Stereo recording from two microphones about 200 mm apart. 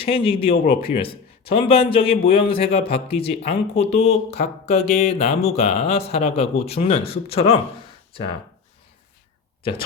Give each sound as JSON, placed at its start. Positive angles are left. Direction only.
{"t": 0.1, "sound": "a man's voice", "side_deg": 30}